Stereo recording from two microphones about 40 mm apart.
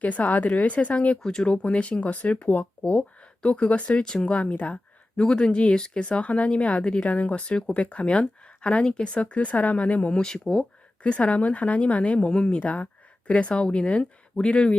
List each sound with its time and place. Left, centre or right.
0.0 s speech: left
1.2 s speech: centre
1.6 s speech: left
3.2 s speech: left
5.1 s speech: left
10.2 s speech: centre
11.0 s speech: left